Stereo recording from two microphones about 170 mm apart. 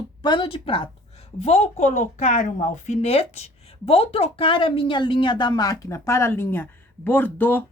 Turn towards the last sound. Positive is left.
turn(degrees=10)  # may be behind; listen again after turning